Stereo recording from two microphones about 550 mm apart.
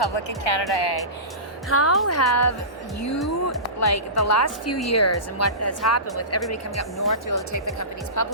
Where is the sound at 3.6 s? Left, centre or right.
Left.